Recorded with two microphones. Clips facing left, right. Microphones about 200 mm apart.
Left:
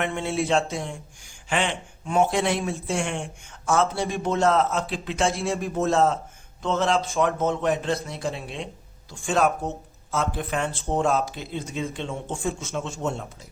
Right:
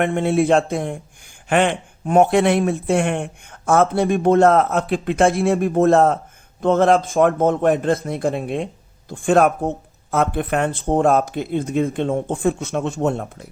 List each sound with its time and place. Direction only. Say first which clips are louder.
0.0 s a man's voice: right 8 dB; 55° right (ahead or behind)